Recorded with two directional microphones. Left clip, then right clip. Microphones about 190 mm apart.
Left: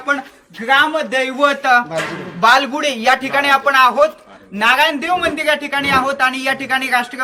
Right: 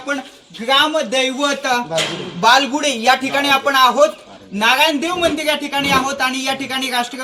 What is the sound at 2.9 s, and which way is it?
Speech, 35° left (ahead or behind).